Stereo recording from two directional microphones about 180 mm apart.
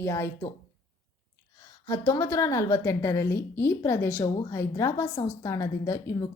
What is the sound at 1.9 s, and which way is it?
A woman's voice, 20° left (ahead or behind).